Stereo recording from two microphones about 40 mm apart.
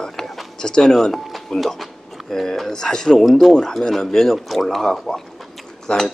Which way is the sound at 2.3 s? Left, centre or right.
Centre.